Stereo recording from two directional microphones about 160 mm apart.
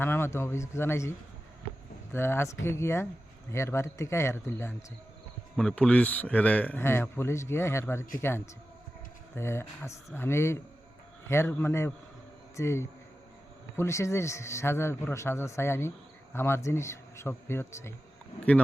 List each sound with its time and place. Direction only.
0.0 s a man's voice: 15° left (ahead or behind)
2.1 s a man's voice: 15° left (ahead or behind)